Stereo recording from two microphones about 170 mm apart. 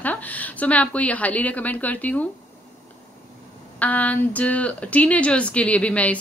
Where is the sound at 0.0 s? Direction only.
10° left (ahead or behind).